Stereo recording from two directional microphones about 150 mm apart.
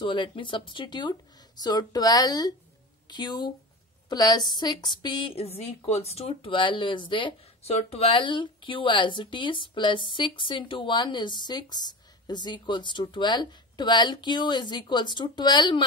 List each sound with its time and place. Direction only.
0.0 s a woman's voice: 35° left (ahead or behind)